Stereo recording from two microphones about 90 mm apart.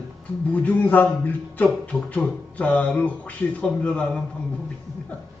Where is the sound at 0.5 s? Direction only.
20° left (ahead or behind).